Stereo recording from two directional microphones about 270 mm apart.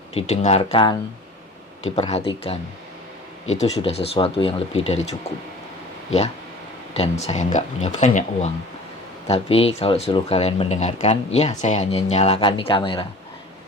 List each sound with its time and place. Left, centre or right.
0.1 s speech: left
3.6 s speech: left
6.1 s speech: left